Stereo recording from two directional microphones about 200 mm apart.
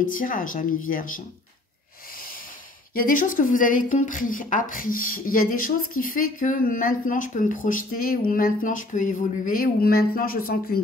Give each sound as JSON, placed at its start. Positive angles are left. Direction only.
{"t": 0.0, "sound": "a woman's voice", "side_deg": 45}
{"t": 2.1, "sound": "snort", "side_deg": 45}
{"t": 2.9, "sound": "a woman's voice", "side_deg": 45}